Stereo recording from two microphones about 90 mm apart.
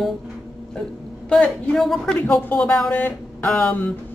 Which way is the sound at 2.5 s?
20° left (ahead or behind).